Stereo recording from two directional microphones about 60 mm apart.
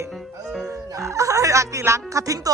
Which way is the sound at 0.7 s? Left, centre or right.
Right.